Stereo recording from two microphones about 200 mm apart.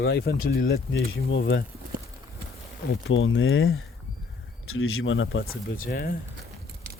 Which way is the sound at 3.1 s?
75° left (ahead or behind).